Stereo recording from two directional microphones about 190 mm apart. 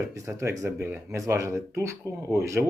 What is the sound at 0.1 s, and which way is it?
Speech, 15° right (ahead or behind).